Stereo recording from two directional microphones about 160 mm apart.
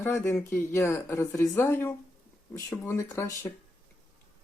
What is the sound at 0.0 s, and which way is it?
Speech, 15° left (ahead or behind).